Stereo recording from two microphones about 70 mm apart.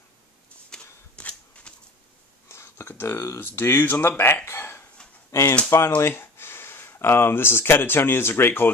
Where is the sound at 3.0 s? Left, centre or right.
Left.